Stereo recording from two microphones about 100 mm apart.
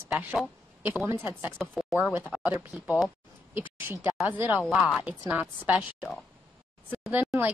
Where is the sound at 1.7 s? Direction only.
Centre (ahead or behind).